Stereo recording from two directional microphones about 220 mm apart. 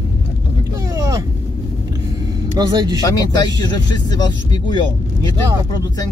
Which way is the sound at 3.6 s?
20° left (ahead or behind).